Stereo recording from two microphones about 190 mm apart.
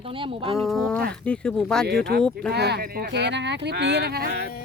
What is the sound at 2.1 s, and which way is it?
Speech, 55° right (ahead or behind).